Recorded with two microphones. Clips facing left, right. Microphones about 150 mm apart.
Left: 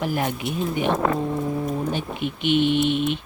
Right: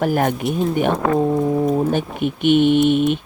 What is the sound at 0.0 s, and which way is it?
Speech, 50° right (ahead or behind).